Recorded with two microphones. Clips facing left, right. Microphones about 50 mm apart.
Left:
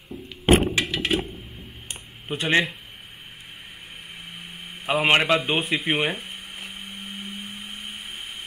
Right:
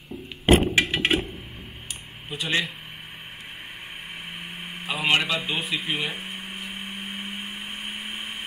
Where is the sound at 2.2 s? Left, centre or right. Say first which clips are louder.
Left 5 dB; left.